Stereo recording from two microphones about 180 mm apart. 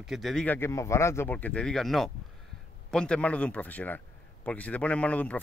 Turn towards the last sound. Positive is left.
turn(degrees=10)  # may be behind; listen again after turning